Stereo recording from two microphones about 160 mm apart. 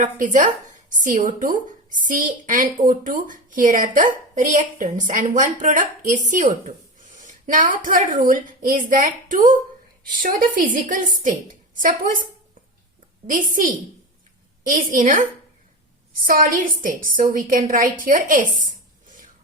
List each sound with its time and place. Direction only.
0.0 s a woman's voice: 55° right (ahead or behind)
13.3 s a woman's voice: 55° right (ahead or behind)